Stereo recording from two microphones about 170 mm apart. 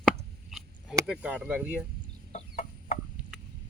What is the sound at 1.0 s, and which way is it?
Speech, 5° right (ahead or behind).